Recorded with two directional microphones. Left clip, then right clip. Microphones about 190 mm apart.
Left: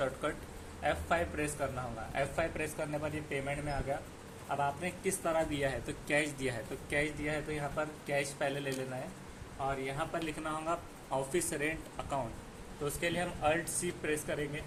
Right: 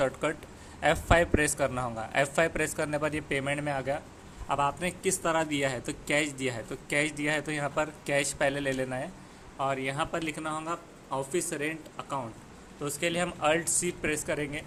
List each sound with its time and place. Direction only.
0.0 s a man's voice: 35° right (ahead or behind)
7.0 s a man's voice: 40° right (ahead or behind)